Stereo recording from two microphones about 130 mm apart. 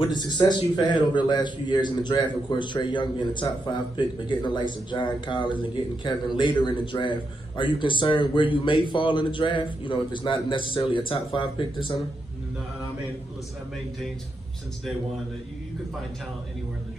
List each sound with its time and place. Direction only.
0.0 s a man's voice: 35° left (ahead or behind)